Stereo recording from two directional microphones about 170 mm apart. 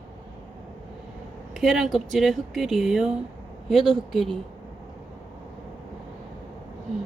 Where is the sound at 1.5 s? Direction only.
Centre (ahead or behind).